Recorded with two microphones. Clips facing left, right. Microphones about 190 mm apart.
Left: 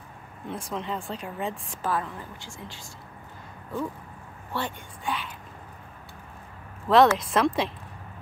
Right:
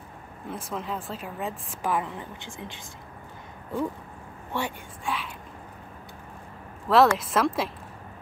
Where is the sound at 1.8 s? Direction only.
15° right (ahead or behind).